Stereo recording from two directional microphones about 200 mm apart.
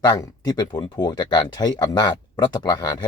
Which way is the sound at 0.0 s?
20° left (ahead or behind).